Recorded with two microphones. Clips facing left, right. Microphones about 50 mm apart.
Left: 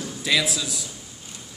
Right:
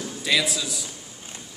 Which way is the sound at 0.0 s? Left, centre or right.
Centre.